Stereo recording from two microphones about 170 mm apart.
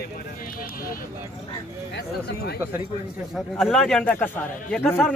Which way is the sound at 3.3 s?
Centre (ahead or behind).